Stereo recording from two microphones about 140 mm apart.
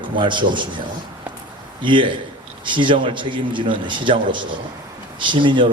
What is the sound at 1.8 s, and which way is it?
A man's voice, 35° right (ahead or behind).